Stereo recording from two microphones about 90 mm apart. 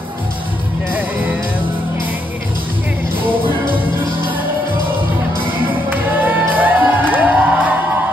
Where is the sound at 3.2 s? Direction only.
20° right (ahead or behind).